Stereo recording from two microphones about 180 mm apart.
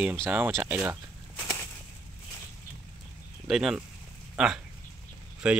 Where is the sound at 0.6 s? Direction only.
10° right (ahead or behind).